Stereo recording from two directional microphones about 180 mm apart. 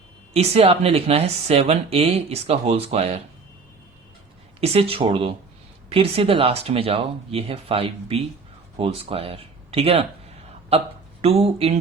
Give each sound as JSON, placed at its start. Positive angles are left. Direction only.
{"t": 0.3, "sound": "speech", "side_deg": -35}
{"t": 4.6, "sound": "speech", "side_deg": -35}